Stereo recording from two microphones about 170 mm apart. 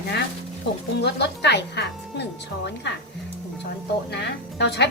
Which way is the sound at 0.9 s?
85° left.